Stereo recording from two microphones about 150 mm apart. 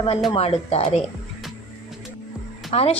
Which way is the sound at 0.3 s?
45° left (ahead or behind).